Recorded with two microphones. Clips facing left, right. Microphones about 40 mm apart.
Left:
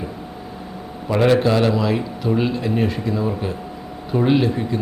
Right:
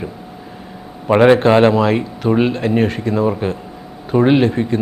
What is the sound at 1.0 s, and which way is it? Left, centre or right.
Speech, right.